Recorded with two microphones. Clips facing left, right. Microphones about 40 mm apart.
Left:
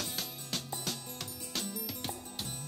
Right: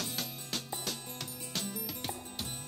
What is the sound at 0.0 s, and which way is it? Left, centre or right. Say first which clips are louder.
Music: right 1 dB; centre.